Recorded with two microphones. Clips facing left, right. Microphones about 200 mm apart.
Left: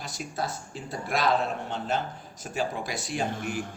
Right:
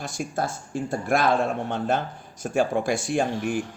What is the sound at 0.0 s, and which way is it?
Speech, 50° right (ahead or behind).